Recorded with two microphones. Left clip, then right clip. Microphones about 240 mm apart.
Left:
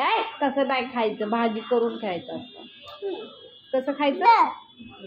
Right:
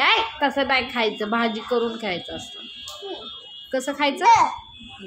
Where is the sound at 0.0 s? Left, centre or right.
Right.